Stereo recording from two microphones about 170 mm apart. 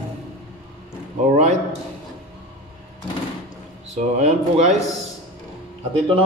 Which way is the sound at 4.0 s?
40° right (ahead or behind).